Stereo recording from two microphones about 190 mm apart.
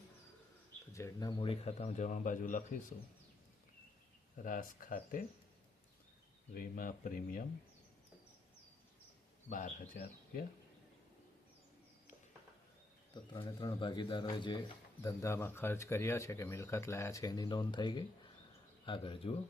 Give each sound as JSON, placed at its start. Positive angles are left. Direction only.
{"t": 0.9, "sound": "a man's voice", "side_deg": 15}
{"t": 4.4, "sound": "speech", "side_deg": 45}
{"t": 6.5, "sound": "speech", "side_deg": 50}
{"t": 9.5, "sound": "speech", "side_deg": 45}
{"t": 13.3, "sound": "speech", "side_deg": 20}